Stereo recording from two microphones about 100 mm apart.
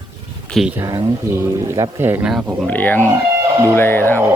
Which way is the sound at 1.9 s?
20° right (ahead or behind).